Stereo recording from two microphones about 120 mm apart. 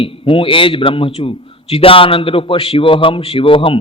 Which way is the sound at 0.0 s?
50° left (ahead or behind).